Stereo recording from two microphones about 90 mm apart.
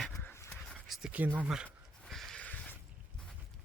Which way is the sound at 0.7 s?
5° right (ahead or behind).